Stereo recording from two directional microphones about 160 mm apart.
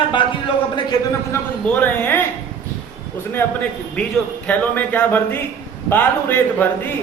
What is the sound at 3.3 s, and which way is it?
Speech, 10° left (ahead or behind).